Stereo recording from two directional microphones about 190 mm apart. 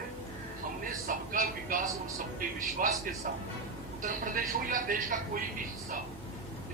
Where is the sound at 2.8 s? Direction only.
45° right (ahead or behind).